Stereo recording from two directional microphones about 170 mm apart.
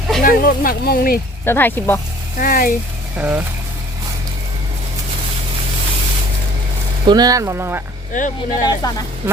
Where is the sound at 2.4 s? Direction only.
55° left (ahead or behind).